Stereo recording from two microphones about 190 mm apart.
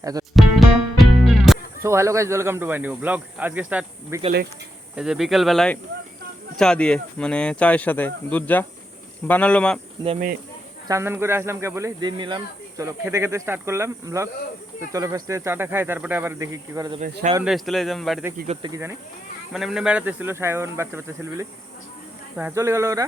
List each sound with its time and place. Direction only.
0.0 s music: 20° right (ahead or behind)
0.3 s music: centre (ahead or behind)
1.8 s speech: 15° right (ahead or behind); by 9.8 s 5° left (ahead or behind)
10.8 s speech: 15° right (ahead or behind)
17.4 s speech: centre (ahead or behind)
18.4 s speech: 30° right (ahead or behind)
18.7 s speech: 15° right (ahead or behind)
19.5 s speech: 5° right (ahead or behind)